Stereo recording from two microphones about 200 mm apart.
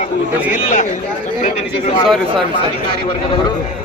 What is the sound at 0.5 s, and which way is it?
A man's voice, 40° left (ahead or behind).